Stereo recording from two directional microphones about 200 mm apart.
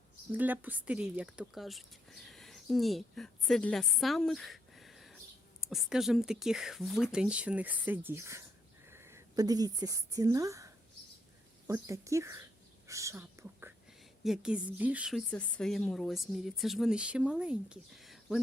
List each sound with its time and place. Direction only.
0.3 s a woman's voice: 10° right (ahead or behind)
11.7 s speech: 15° right (ahead or behind)
12.9 s whispering: 15° right (ahead or behind)
14.3 s a woman's voice: 5° right (ahead or behind)